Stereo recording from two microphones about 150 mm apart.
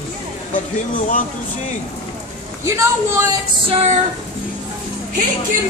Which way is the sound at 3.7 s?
40° right (ahead or behind).